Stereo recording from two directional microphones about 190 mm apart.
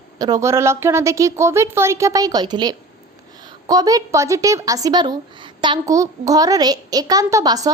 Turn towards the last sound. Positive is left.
turn(degrees=-20)  # may be behind; listen again after turning